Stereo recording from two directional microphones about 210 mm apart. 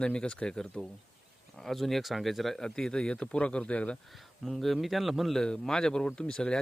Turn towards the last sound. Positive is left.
turn(degrees=5)  # may be behind; listen again after turning